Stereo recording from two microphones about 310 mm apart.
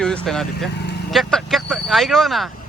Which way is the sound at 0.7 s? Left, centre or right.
Left.